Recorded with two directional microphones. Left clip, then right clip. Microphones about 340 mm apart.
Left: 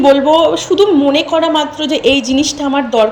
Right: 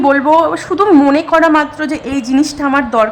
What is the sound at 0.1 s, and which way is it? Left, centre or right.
Speech, right.